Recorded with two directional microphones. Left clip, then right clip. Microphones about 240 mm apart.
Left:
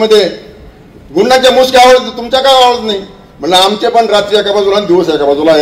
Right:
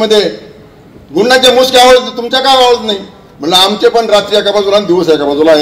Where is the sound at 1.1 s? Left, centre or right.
Right.